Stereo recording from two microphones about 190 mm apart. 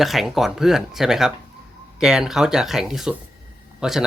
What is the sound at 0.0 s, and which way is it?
Speech, centre (ahead or behind).